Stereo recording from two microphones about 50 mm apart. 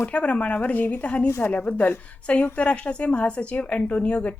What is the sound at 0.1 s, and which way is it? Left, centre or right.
A woman's voice, left.